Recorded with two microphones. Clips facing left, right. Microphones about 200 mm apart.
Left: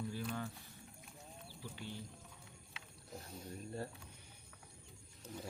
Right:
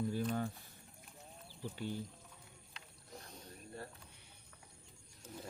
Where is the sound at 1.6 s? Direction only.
45° right (ahead or behind).